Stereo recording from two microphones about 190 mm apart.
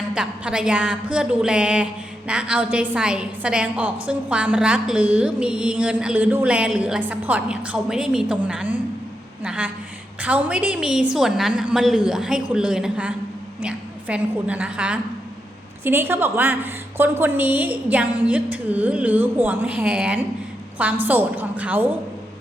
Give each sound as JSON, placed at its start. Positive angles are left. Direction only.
{"t": 0.1, "sound": "a woman's voice", "side_deg": -5}